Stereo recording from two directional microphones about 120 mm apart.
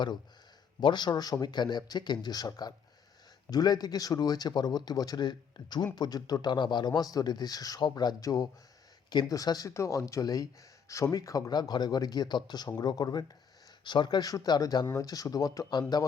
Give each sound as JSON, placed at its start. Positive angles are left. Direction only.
{"t": 0.8, "sound": "speech", "side_deg": 40}